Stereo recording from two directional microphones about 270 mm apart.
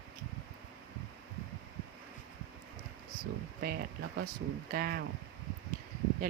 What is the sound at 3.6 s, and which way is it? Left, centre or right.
Speech, right.